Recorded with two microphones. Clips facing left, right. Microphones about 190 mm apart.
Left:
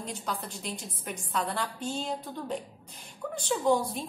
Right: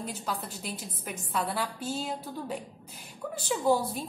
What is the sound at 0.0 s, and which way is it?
A woman's voice, 5° right (ahead or behind).